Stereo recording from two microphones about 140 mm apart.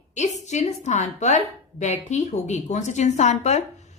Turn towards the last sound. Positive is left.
turn(degrees=55)  # may be behind; listen again after turning